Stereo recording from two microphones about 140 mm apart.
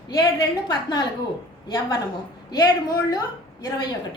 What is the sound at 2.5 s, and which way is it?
A woman's voice, 25° left (ahead or behind).